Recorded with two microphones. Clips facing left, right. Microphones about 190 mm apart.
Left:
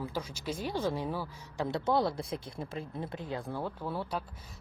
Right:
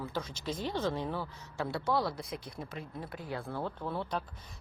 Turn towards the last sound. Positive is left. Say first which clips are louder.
# even
turn(degrees=10)  # may be behind; listen again after turning